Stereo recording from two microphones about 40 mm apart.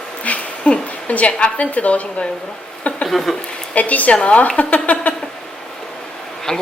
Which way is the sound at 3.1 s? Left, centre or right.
Centre.